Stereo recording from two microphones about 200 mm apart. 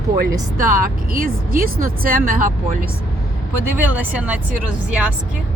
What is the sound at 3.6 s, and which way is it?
Speech, 10° right (ahead or behind).